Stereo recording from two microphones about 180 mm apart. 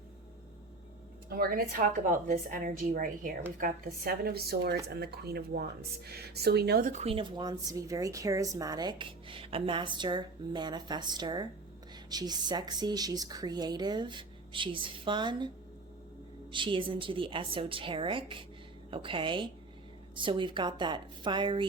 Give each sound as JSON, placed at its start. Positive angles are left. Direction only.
{"t": 1.3, "sound": "a woman's voice", "side_deg": -55}
{"t": 6.9, "sound": "speech", "side_deg": -35}
{"t": 16.5, "sound": "speech", "side_deg": -30}